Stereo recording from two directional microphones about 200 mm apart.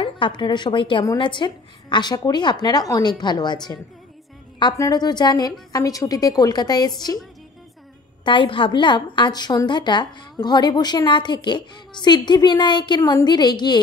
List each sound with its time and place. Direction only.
0.0 s a woman's voice: 25° left (ahead or behind)
8.3 s a woman's voice: 25° left (ahead or behind)